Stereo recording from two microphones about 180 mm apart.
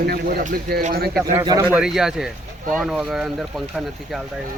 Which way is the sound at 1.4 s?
15° right (ahead or behind).